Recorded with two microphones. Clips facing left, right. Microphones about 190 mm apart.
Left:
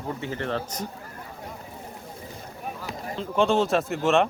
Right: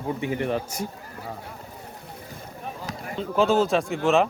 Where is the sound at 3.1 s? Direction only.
Centre (ahead or behind).